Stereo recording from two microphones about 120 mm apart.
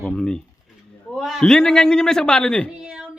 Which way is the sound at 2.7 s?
5° right (ahead or behind).